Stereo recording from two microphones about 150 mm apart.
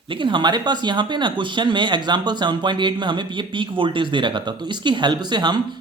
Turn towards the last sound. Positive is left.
turn(degrees=-30)  # may be behind; listen again after turning